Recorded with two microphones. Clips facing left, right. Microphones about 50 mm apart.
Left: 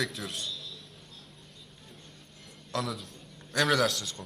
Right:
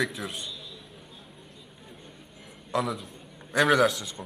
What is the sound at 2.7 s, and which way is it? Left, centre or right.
A man's voice, centre.